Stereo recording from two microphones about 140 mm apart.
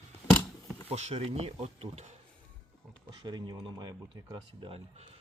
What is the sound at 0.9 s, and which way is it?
Speech, 50° right (ahead or behind).